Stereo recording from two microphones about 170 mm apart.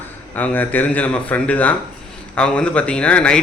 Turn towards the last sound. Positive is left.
turn(degrees=5)  # may be behind; listen again after turning